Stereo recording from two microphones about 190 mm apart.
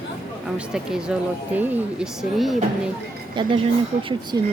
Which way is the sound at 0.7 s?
5° right (ahead or behind).